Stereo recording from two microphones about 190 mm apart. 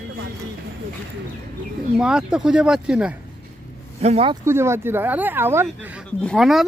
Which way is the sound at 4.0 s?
35° right (ahead or behind).